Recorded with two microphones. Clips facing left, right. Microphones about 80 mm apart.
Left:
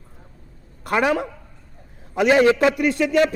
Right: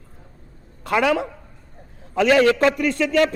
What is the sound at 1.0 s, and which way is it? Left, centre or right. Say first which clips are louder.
A man's voice: right 1 dB; centre.